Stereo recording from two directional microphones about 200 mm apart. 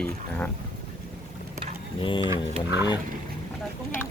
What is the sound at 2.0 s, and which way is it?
Speech, 25° left (ahead or behind).